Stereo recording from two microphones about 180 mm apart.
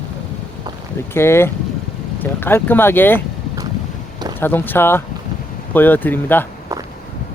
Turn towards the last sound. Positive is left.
turn(degrees=-15)  # may be behind; listen again after turning